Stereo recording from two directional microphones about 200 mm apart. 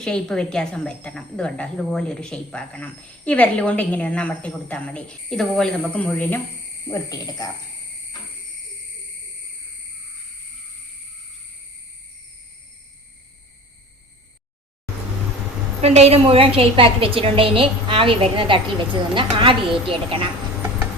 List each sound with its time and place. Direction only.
0.0 s a woman's voice: 5° left (ahead or behind)
15.8 s a woman's voice: 30° right (ahead or behind)